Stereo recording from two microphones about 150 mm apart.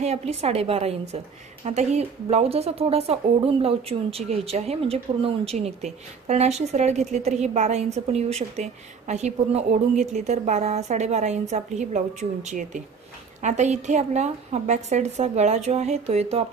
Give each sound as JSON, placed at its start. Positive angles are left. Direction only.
{"t": 0.0, "sound": "a woman's voice", "side_deg": -45}